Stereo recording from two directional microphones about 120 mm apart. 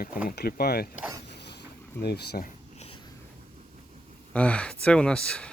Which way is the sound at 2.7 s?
55° left (ahead or behind).